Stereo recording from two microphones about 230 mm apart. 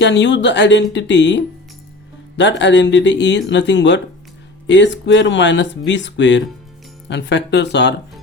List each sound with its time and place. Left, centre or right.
0.0 s speech: left